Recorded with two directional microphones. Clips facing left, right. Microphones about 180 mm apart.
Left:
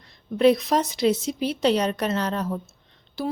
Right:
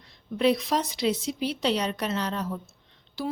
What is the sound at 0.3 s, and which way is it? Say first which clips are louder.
Speech: left 5 dB; 45° left (ahead or behind).